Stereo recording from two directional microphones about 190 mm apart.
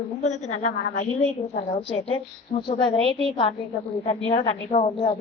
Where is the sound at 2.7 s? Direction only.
25° left (ahead or behind).